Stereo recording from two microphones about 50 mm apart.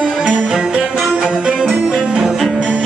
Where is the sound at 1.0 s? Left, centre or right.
Centre.